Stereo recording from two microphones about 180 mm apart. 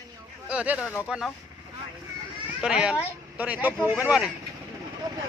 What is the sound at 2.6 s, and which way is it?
A man's voice, 5° right (ahead or behind).